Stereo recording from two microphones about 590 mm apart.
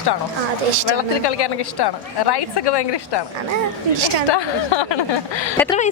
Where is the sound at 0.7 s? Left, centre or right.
Right.